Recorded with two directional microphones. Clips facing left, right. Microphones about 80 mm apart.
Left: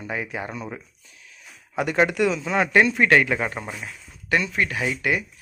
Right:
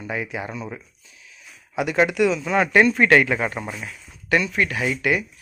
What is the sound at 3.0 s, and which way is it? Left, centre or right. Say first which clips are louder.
Speech: right 2 dB; centre.